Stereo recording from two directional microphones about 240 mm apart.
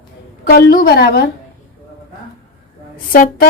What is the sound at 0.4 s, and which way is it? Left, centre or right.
Speech, left.